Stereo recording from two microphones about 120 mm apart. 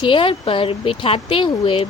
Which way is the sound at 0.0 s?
45° left (ahead or behind).